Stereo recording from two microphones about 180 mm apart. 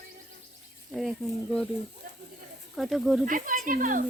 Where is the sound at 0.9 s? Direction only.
Centre (ahead or behind).